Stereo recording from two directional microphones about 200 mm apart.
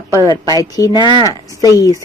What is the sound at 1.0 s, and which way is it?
Speech, 20° right (ahead or behind).